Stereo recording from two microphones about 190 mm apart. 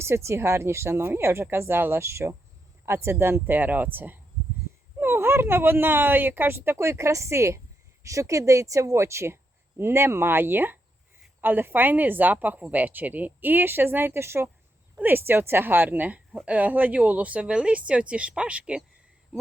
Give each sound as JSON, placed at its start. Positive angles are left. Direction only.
{"t": 0.3, "sound": "a woman's voice", "side_deg": -15}